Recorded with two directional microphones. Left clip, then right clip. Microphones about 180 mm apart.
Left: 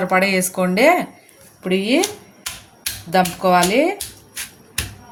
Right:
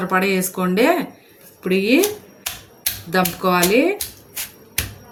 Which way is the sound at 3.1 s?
15° left (ahead or behind).